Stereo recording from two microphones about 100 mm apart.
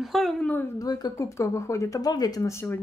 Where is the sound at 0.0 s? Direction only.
Centre (ahead or behind).